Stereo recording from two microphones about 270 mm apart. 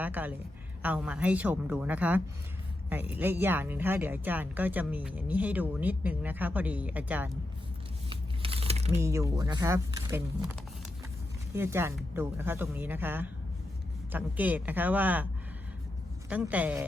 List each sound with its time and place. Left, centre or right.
0.0 s a woman's voice: centre
8.1 s crumpling: right
9.0 s speech: centre
11.5 s speech: centre
16.3 s a woman's voice: centre